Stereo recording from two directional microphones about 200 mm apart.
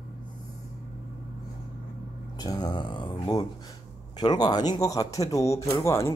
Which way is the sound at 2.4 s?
20° left (ahead or behind).